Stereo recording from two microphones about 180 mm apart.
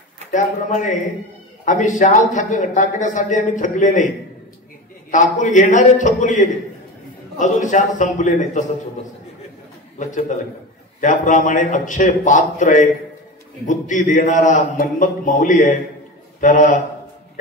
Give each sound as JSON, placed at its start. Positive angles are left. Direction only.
{"t": 0.3, "sound": "speech", "side_deg": 45}
{"t": 5.1, "sound": "speech", "side_deg": 45}
{"t": 9.9, "sound": "a man's voice", "side_deg": 45}